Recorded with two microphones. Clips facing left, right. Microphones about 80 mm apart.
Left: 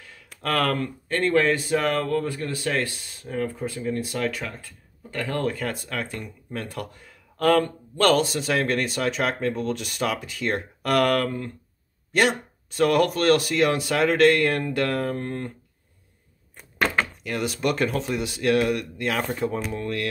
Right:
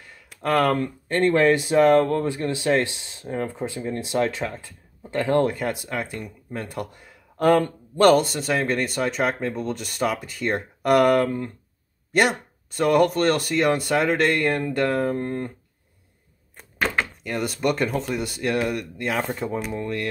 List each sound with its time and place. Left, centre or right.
0.1 s a sound: centre
0.7 s speech: right; by 15.0 s centre
15.0 s speech: centre
16.8 s door: centre
17.2 s speech: centre